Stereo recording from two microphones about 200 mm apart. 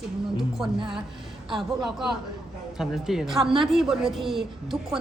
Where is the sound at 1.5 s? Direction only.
Centre (ahead or behind).